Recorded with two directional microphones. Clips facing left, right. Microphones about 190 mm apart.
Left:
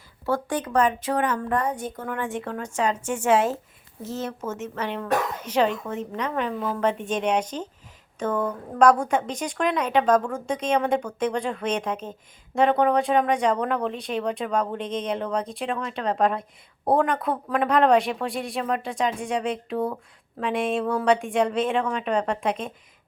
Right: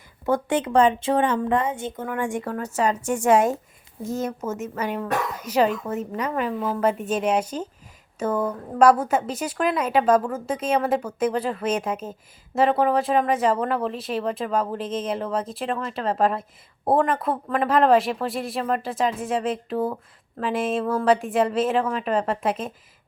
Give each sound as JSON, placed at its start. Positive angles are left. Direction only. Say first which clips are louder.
{"t": 0.3, "sound": "a woman's voice", "louder": "right 3 dB", "side_deg": -20}
{"t": 2.0, "sound": "a woman's voice", "louder": "right 3 dB", "side_deg": -10}